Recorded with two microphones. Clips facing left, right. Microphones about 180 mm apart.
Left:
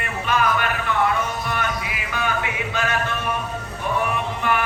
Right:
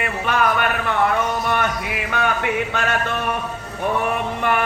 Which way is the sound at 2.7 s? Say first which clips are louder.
Right 2 dB; 60° right (ahead or behind).